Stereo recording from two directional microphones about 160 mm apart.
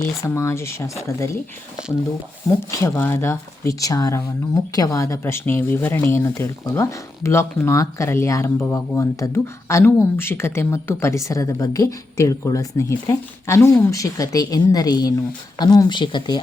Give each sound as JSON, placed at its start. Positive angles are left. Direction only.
{"t": 0.0, "sound": "speech", "side_deg": 20}
{"t": 2.6, "sound": "speech", "side_deg": 15}